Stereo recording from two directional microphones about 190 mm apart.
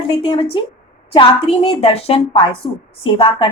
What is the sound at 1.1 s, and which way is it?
A woman's voice, 30° left (ahead or behind).